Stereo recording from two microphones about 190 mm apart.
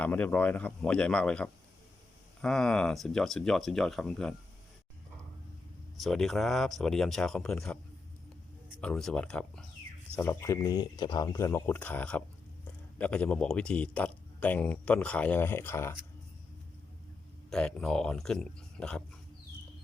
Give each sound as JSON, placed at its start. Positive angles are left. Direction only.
{"t": 0.0, "sound": "a man's voice", "side_deg": 10}
{"t": 6.0, "sound": "speech", "side_deg": 0}
{"t": 8.8, "sound": "speech", "side_deg": 5}
{"t": 10.2, "sound": "a man's voice", "side_deg": 15}
{"t": 17.5, "sound": "speech", "side_deg": 5}